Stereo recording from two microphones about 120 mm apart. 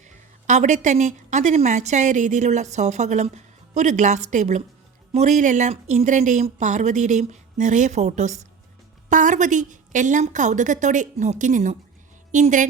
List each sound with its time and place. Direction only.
0.4 s a woman's voice: 90° right
9.0 s a woman's voice: 90° right